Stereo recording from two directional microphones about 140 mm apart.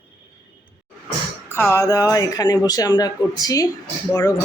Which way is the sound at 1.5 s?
20° left (ahead or behind).